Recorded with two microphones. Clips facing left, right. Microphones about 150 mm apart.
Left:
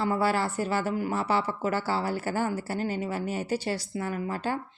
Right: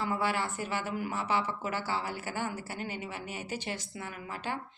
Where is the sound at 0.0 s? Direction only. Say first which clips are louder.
Left 6 dB; 35° left (ahead or behind).